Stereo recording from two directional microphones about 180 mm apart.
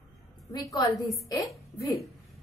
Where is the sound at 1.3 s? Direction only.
20° left (ahead or behind).